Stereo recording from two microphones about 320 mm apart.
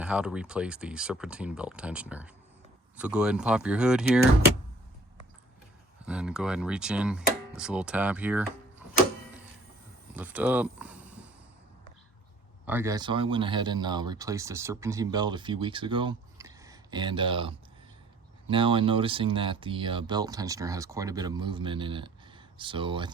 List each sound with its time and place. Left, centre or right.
0.0 s speech: centre
6.1 s speech: centre
10.2 s speech: centre
12.6 s speech: centre